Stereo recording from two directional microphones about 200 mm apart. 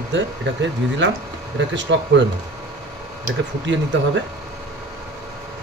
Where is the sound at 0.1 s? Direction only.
65° right (ahead or behind).